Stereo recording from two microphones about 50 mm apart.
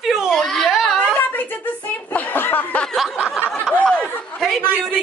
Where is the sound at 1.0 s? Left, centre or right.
Left.